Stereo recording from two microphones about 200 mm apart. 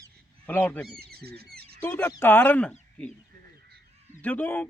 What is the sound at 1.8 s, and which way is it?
Speech, 10° left (ahead or behind).